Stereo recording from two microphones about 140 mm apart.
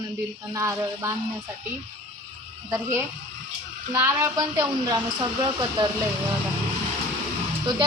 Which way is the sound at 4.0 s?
15° right (ahead or behind).